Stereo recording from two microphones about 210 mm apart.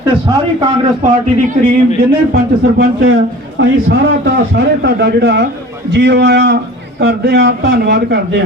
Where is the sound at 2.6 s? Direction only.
55° right (ahead or behind).